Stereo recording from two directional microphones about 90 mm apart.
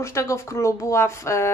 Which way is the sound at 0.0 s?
35° left (ahead or behind).